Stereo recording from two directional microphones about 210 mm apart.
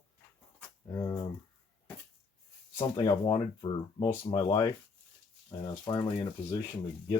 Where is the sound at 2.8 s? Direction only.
15° left (ahead or behind).